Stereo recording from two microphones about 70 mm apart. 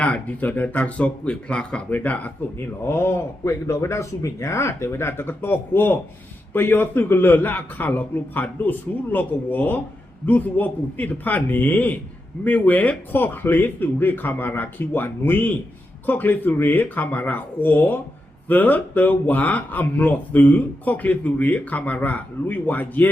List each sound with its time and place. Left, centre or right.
0.0 s speech: left
2.0 s speech: left
2.8 s a man's voice: left